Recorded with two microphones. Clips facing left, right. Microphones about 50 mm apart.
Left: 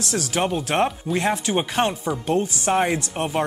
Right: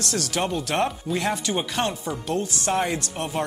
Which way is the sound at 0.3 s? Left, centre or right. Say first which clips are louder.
Left 4 dB; left.